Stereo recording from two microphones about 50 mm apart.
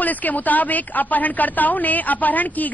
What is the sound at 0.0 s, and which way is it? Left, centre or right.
Speech, left.